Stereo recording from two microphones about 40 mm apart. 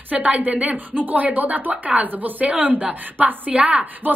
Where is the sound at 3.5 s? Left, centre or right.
Right.